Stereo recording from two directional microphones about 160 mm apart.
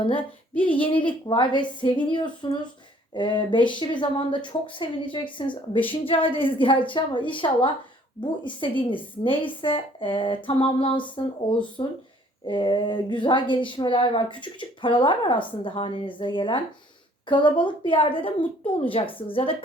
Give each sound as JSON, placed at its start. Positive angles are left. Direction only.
{"t": 0.6, "sound": "speech", "side_deg": 35}